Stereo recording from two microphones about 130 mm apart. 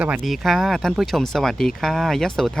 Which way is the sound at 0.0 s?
5° right (ahead or behind).